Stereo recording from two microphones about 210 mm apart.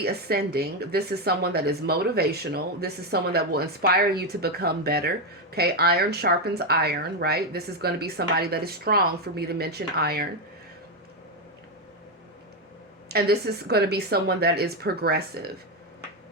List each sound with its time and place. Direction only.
0.0 s a woman's voice: 50° right (ahead or behind)
13.1 s a woman's voice: 50° right (ahead or behind)